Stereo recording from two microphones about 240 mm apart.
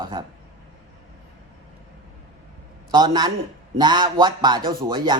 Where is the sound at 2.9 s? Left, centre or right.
Centre.